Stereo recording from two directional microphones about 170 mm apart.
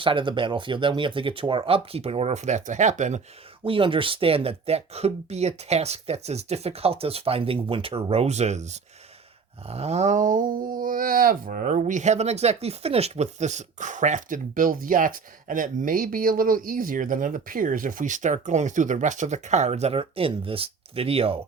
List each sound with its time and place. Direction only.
0.0 s speech: 30° right (ahead or behind)
3.6 s speech: 30° right (ahead or behind)